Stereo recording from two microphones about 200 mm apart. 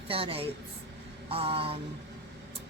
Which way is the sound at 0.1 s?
30° right (ahead or behind).